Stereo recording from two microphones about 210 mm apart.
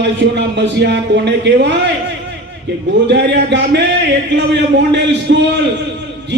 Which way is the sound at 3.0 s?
55° right (ahead or behind).